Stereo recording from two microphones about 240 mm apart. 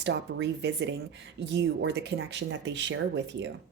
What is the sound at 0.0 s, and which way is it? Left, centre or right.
Speech, right.